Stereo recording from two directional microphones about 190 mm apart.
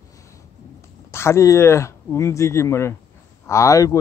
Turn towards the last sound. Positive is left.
turn(degrees=15)  # may be behind; listen again after turning